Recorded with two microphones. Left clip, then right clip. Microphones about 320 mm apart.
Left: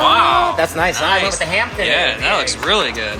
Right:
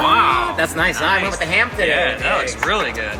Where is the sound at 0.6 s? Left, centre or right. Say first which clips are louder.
Left 2 dB; left.